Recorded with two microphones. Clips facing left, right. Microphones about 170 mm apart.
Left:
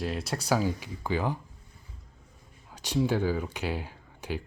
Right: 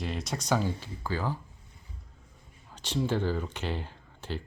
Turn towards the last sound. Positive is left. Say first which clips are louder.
# left 2 dB
turn(degrees=10)  # may be behind; listen again after turning